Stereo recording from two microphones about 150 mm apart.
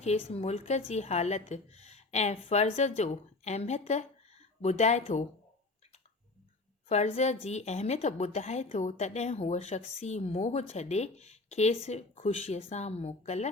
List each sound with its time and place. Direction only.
0.0 s a woman's voice: 45° left (ahead or behind)
6.8 s a woman's voice: 45° left (ahead or behind)